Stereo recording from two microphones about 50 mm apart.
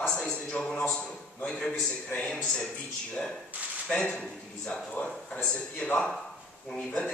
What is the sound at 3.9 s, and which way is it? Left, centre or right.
Speech, centre.